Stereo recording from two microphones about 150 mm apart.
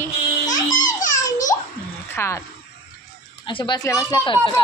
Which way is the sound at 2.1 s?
20° left (ahead or behind).